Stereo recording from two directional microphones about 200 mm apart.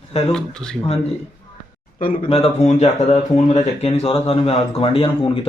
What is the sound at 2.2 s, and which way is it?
Speech, 30° left (ahead or behind).